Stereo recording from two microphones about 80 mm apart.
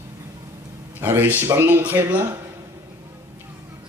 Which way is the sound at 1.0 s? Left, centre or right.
Right.